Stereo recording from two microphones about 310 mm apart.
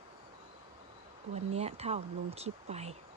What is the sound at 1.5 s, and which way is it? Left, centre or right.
Speech, centre.